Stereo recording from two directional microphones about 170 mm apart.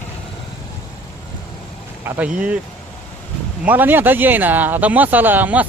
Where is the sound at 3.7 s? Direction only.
10° right (ahead or behind).